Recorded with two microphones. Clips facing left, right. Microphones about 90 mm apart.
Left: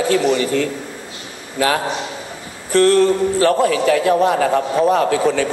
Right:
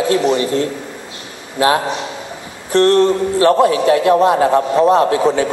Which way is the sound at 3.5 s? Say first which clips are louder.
Right 3 dB; 25° right (ahead or behind).